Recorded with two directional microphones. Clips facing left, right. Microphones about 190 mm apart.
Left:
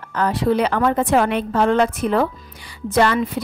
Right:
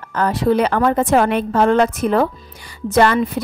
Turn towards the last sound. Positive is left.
turn(degrees=-45)  # may be behind; listen again after turning